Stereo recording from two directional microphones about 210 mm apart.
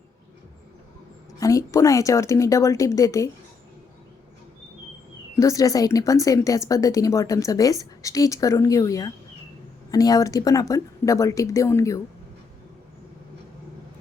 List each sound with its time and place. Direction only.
1.4 s a woman's voice: 15° left (ahead or behind)
5.4 s a woman's voice: 15° left (ahead or behind)